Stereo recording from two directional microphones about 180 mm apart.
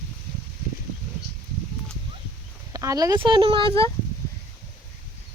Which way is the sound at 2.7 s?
20° right (ahead or behind).